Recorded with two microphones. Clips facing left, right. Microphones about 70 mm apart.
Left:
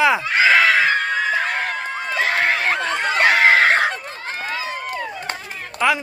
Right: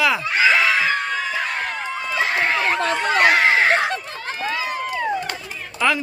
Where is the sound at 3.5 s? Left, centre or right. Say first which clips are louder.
Left 2 dB; left.